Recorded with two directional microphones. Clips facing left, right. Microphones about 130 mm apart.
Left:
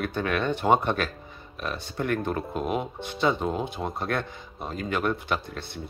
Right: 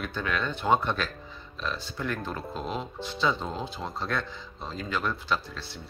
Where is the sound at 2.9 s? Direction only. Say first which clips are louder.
Left 3 dB; 55° left (ahead or behind).